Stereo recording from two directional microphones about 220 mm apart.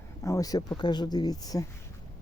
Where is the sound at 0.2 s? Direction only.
15° left (ahead or behind).